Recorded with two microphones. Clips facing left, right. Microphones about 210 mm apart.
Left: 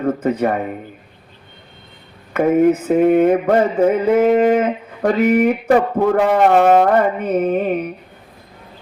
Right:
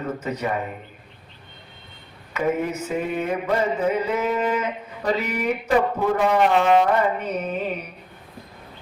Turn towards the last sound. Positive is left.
turn(degrees=55)  # may be behind; listen again after turning